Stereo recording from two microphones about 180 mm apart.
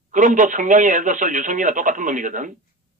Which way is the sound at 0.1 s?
45° right (ahead or behind).